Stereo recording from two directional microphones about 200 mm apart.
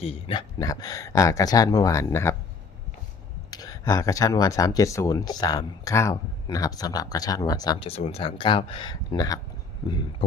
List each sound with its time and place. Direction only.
0.0 s speech: 25° left (ahead or behind)
3.5 s speech: 20° left (ahead or behind)